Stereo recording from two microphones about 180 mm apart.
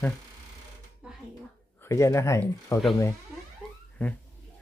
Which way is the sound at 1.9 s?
15° left (ahead or behind).